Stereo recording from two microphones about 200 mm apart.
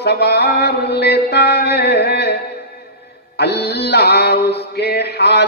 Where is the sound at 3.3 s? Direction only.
55° left (ahead or behind).